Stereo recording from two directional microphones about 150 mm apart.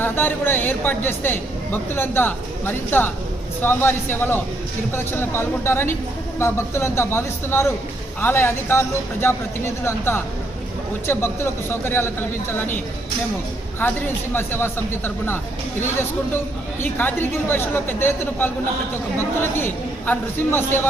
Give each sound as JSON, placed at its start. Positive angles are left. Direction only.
{"t": 0.0, "sound": "speech", "side_deg": 15}
{"t": 11.0, "sound": "speech", "side_deg": 15}
{"t": 13.8, "sound": "speech", "side_deg": 10}
{"t": 16.8, "sound": "speech", "side_deg": 15}
{"t": 19.5, "sound": "speech", "side_deg": 15}